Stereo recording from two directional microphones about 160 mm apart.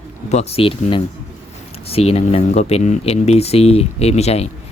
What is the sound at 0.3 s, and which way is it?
Speech, 40° left (ahead or behind).